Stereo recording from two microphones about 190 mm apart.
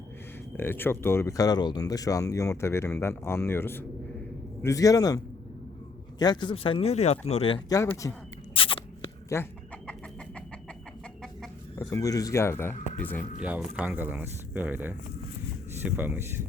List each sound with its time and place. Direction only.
0.5 s speech: 10° left (ahead or behind); by 7.8 s 30° left (ahead or behind)
7.8 s speech: 15° left (ahead or behind)
8.5 s a sound: 30° left (ahead or behind)
9.3 s chicken: 10° left (ahead or behind)
11.8 s speech: 15° left (ahead or behind)
12.7 s speech: 40° left (ahead or behind)
13.0 s speech: 10° left (ahead or behind)
13.4 s speech: 5° right (ahead or behind)